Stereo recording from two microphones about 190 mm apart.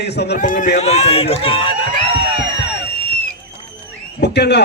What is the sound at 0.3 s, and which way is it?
Speech, 45° left (ahead or behind).